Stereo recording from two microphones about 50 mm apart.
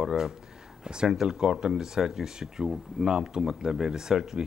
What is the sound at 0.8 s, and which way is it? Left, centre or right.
Speech, centre.